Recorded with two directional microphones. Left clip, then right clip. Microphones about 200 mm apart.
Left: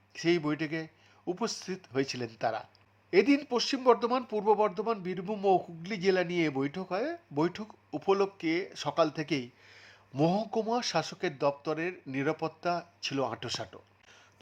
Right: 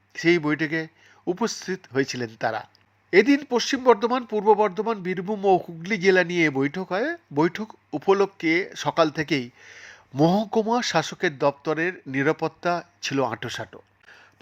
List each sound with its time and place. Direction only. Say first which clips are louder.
0.1 s speech: right 8 dB; 15° right (ahead or behind)